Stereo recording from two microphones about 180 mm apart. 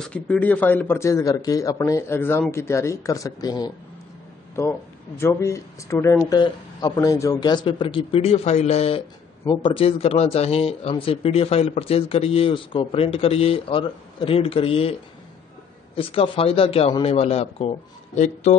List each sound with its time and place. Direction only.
0.0 s speech: 5° left (ahead or behind); by 15.0 s 30° left (ahead or behind)
16.0 s speech: 30° left (ahead or behind)